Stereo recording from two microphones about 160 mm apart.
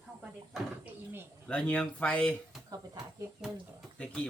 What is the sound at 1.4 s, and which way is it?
Speech, 5° left (ahead or behind).